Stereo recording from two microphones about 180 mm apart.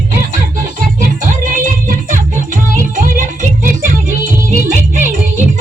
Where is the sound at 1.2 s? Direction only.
45° right (ahead or behind).